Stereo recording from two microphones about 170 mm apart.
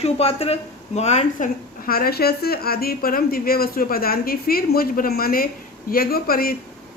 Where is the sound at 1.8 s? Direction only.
60° left (ahead or behind).